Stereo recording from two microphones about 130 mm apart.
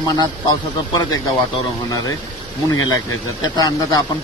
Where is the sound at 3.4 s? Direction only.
30° left (ahead or behind).